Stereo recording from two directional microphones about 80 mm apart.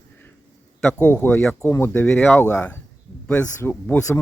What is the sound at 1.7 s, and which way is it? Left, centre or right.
Speech, left.